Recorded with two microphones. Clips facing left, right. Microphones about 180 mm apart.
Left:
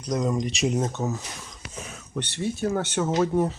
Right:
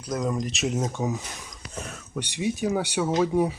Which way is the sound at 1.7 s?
Centre (ahead or behind).